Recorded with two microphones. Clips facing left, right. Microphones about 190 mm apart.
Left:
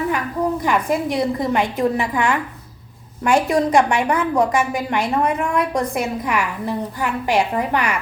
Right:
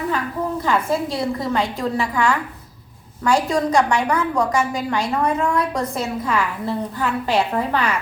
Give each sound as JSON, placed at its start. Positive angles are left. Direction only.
{"t": 0.6, "sound": "a woman's voice", "side_deg": 15}